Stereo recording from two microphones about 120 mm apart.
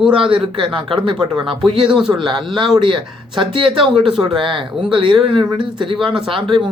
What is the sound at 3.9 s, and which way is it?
Speech, 5° right (ahead or behind).